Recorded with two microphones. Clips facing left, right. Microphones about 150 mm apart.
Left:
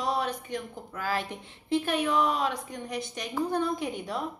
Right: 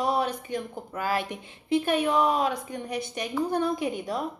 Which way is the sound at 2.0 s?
45° right (ahead or behind).